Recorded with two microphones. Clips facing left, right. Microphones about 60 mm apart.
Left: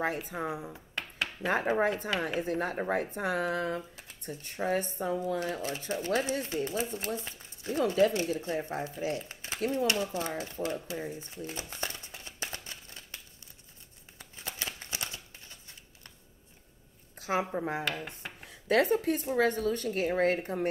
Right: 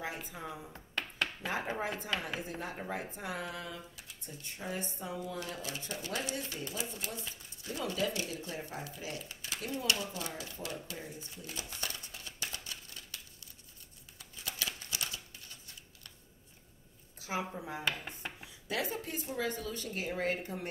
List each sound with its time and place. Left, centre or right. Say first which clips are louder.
0.3 s speech: left 9 dB; left
0.7 s a sound: even; centre
1.4 s speech: left 12 dB; left
11.7 s a sound: left 4 dB; left
14.1 s scissors: left 2 dB; left
14.8 s typewriter: left 2 dB; left
17.5 s speech: left 8 dB; left
18.0 s a sound: left 1 dB; centre
18.5 s speech: left 12 dB; left
19.2 s speech: left 9 dB; left